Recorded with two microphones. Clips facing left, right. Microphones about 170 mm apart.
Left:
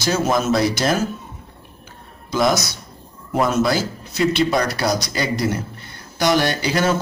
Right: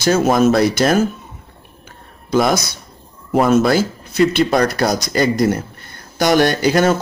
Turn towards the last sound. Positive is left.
turn(degrees=-50)  # may be behind; listen again after turning